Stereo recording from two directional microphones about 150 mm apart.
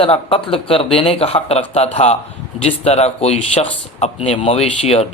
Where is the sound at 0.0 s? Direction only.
40° left (ahead or behind).